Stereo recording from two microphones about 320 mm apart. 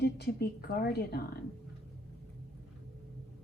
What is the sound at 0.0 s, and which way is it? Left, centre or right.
A woman's voice, left.